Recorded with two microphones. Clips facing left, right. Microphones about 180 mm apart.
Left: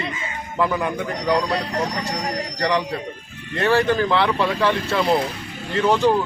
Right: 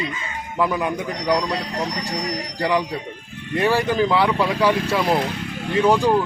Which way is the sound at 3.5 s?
10° right (ahead or behind).